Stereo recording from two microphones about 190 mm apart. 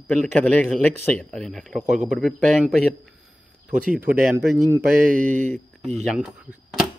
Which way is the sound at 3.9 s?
10° right (ahead or behind).